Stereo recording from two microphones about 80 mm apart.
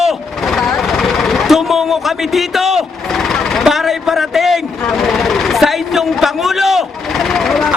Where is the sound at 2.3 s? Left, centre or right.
Centre.